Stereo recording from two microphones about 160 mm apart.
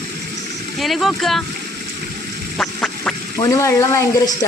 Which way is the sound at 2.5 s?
5° left (ahead or behind).